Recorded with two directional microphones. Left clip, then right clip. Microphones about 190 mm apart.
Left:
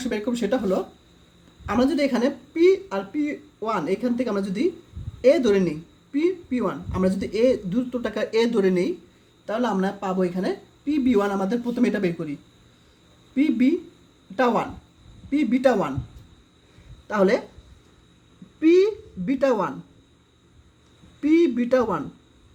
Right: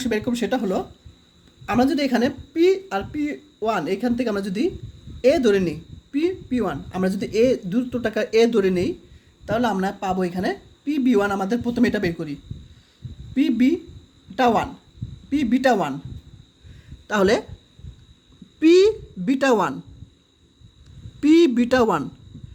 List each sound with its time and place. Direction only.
0.0 s a woman's voice: 30° right (ahead or behind)
13.3 s a woman's voice: 30° right (ahead or behind)
17.1 s a woman's voice: 35° right (ahead or behind)
18.6 s a woman's voice: 40° right (ahead or behind)
21.2 s speech: 45° right (ahead or behind)